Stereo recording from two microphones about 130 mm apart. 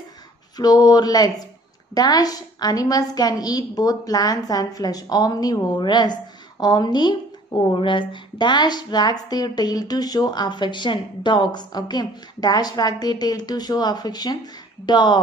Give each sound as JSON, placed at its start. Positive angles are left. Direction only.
{"t": 0.6, "sound": "a woman's voice", "side_deg": 30}